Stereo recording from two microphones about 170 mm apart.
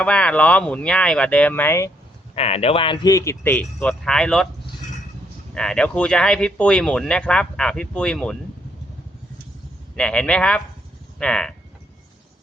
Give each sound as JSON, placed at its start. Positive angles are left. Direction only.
{"t": 0.0, "sound": "speech", "side_deg": 5}
{"t": 2.3, "sound": "speech", "side_deg": 35}
{"t": 5.5, "sound": "speech", "side_deg": 5}
{"t": 9.9, "sound": "speech", "side_deg": 5}